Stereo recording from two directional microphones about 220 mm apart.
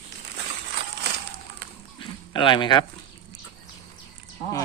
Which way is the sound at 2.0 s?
20° left (ahead or behind).